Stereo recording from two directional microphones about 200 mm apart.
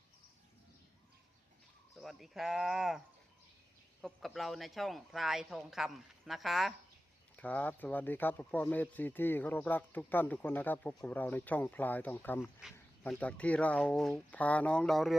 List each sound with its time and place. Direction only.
2.0 s speech: centre (ahead or behind)
4.0 s speech: centre (ahead or behind)